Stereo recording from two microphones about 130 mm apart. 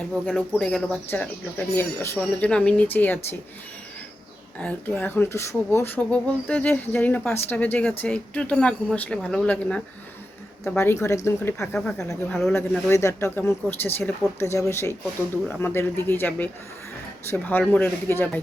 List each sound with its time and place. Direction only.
0.1 s speech: 5° left (ahead or behind)
4.5 s speech: 10° left (ahead or behind)
10.8 s speech: 20° left (ahead or behind)
12.3 s speech: centre (ahead or behind)
12.9 s speech: 20° left (ahead or behind)